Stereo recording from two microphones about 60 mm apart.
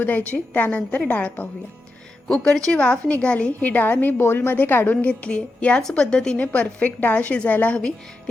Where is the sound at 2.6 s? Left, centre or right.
Centre; by 5.0 s left.